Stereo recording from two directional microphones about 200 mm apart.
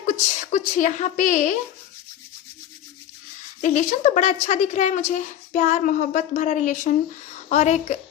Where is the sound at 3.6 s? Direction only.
40° left (ahead or behind).